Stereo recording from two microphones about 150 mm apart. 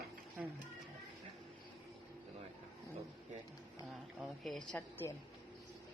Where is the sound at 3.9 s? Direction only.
Centre (ahead or behind).